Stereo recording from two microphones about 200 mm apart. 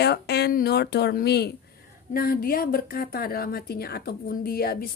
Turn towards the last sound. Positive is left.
turn(degrees=50)  # may be behind; listen again after turning